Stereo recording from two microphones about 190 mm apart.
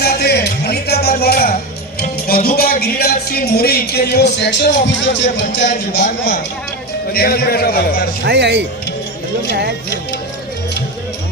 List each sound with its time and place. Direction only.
0.0 s music: 55° left (ahead or behind)
2.0 s speech: 55° left (ahead or behind); by 6.1 s 70° left (ahead or behind)
7.1 s speech: 55° left (ahead or behind)
8.2 s speech: 60° right (ahead or behind)